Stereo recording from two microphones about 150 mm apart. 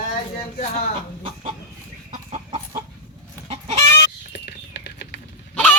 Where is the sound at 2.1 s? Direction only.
35° right (ahead or behind).